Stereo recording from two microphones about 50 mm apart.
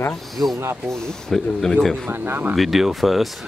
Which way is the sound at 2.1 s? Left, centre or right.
Right.